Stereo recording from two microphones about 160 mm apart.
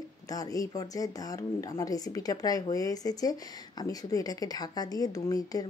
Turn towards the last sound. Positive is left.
turn(degrees=20)  # may be behind; listen again after turning